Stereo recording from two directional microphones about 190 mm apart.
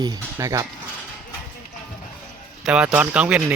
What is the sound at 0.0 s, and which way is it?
Speech, 20° right (ahead or behind).